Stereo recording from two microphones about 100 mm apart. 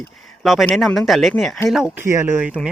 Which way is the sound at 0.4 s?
Centre (ahead or behind).